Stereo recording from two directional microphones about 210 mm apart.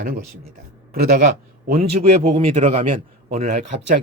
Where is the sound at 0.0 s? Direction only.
45° right (ahead or behind).